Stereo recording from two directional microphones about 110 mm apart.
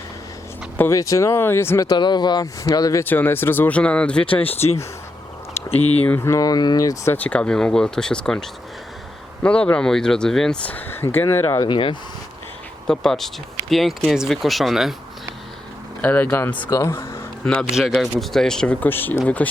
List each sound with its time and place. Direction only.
0.8 s speech: 30° left (ahead or behind)
1.9 s speech: 40° left (ahead or behind)
3.0 s speech: 20° left (ahead or behind)
4.4 s speech: 70° left (ahead or behind)
6.0 s speech: 15° left (ahead or behind)
6.2 s speech: 30° left (ahead or behind)
7.1 s speech: 15° left (ahead or behind)
11.6 s speech: 45° left (ahead or behind)
12.9 s speech: 5° left (ahead or behind)
16.0 s speech: 15° left (ahead or behind)
17.4 s a man's voice: 10° left (ahead or behind)
17.7 s speech: 5° right (ahead or behind); by 19.5 s 15° left (ahead or behind)